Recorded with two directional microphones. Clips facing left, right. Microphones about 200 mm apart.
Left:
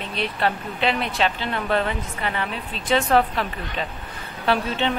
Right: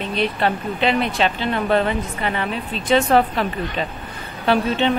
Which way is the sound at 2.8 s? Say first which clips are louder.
Right 3 dB; centre (ahead or behind).